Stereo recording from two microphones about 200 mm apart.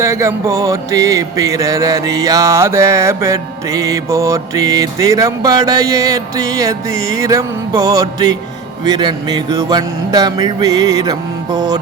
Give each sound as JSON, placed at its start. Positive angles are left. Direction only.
{"t": 0.0, "sound": "music", "side_deg": -15}